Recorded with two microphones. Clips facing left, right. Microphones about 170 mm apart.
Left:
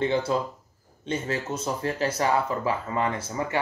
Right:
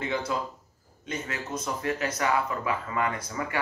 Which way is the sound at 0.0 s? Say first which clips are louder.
Left 5 dB; 30° left (ahead or behind).